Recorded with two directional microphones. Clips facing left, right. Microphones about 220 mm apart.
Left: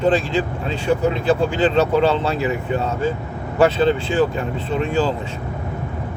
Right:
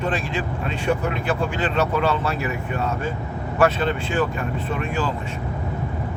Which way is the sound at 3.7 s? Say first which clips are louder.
Left 5 dB; 30° left (ahead or behind).